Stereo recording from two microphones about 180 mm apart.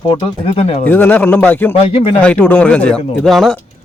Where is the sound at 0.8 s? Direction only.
10° left (ahead or behind).